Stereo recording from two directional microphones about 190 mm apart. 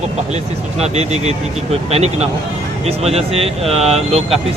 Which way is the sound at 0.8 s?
35° right (ahead or behind).